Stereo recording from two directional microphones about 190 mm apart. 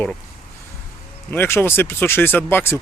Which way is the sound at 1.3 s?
10° left (ahead or behind).